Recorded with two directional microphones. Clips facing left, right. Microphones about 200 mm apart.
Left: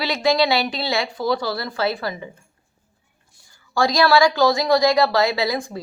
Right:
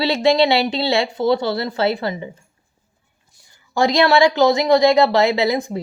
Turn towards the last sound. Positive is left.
turn(degrees=-20)  # may be behind; listen again after turning